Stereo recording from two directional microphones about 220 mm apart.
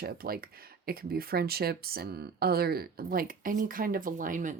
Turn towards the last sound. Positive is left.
turn(degrees=-35)  # may be behind; listen again after turning